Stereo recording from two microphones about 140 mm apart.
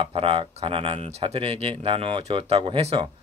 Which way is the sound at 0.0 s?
40° right (ahead or behind).